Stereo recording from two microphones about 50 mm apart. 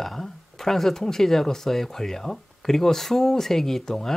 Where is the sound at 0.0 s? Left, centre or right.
Centre.